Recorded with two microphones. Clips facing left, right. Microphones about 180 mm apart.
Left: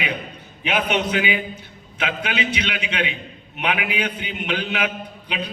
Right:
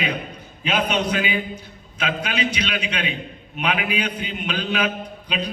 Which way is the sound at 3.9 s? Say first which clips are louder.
Right 1 dB; 20° left (ahead or behind).